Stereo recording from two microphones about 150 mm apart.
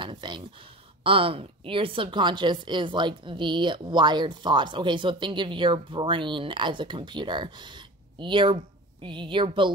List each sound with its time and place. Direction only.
0.0 s speech: 30° right (ahead or behind)